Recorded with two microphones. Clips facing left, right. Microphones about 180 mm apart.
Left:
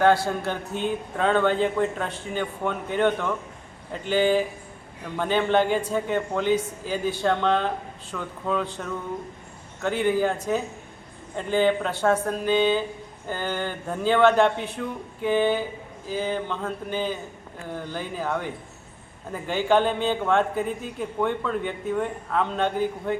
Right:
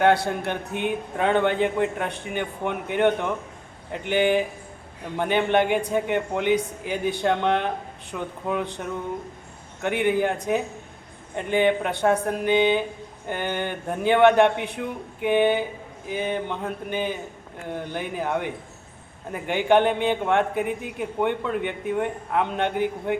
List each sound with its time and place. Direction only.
0.3 s a man's voice: 20° right (ahead or behind)